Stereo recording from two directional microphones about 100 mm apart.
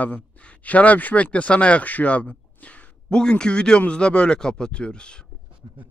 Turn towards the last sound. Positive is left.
turn(degrees=10)  # may be behind; listen again after turning